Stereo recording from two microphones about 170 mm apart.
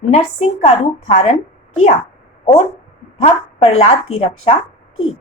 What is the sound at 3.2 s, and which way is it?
A woman's voice, 35° left (ahead or behind).